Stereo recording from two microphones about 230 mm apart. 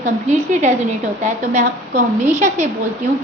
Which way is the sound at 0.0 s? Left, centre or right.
Right.